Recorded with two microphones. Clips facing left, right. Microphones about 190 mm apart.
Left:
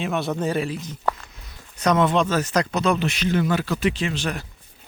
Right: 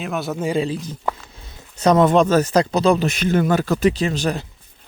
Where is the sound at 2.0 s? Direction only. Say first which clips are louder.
Right 6 dB; 40° right (ahead or behind).